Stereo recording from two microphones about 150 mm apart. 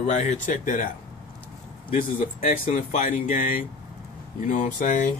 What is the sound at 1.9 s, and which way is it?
Speech, 60° left (ahead or behind).